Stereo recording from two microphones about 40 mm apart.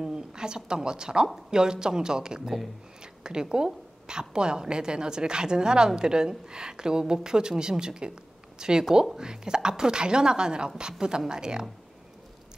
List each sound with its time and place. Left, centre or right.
0.0 s a woman's voice: centre